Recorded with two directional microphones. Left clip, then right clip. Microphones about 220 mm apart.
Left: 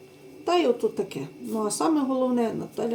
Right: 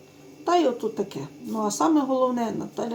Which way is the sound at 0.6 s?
20° right (ahead or behind).